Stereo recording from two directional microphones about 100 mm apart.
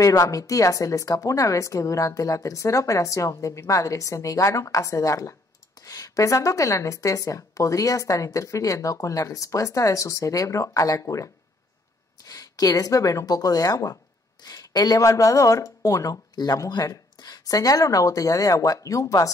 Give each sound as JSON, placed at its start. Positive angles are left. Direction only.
{"t": 0.0, "sound": "a woman's voice", "side_deg": 35}